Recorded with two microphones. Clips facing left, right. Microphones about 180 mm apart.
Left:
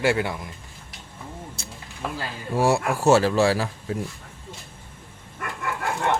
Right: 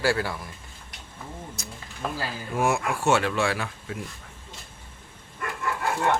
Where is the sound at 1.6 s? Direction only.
30° left (ahead or behind).